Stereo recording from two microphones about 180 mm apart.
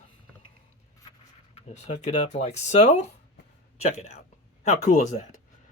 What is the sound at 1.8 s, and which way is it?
Speech, 40° left (ahead or behind).